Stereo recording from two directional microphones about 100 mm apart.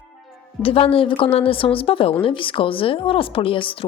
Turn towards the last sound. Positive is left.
turn(degrees=60)  # may be behind; listen again after turning